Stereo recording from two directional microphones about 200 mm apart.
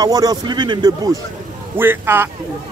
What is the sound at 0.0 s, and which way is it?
A man's voice, 20° right (ahead or behind).